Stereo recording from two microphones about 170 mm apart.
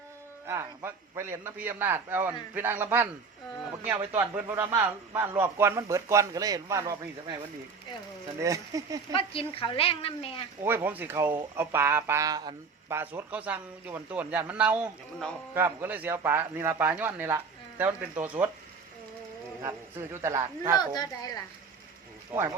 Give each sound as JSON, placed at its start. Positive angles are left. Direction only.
{"t": 0.4, "sound": "speech", "side_deg": -15}
{"t": 4.2, "sound": "speech", "side_deg": -10}
{"t": 8.4, "sound": "speech", "side_deg": -20}
{"t": 9.1, "sound": "a woman's voice", "side_deg": 30}
{"t": 10.6, "sound": "speech", "side_deg": -15}
{"t": 19.6, "sound": "speech", "side_deg": -15}
{"t": 20.7, "sound": "speech", "side_deg": 25}